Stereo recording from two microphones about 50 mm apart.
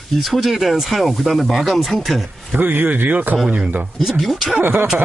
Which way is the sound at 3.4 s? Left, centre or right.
Right.